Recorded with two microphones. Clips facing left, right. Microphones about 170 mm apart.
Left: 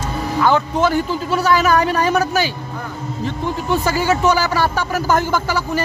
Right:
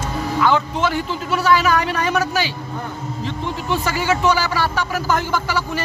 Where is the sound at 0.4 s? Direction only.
40° left (ahead or behind).